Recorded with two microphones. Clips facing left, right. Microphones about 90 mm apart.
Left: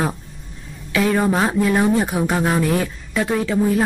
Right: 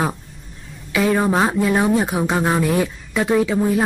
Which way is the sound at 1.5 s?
5° right (ahead or behind).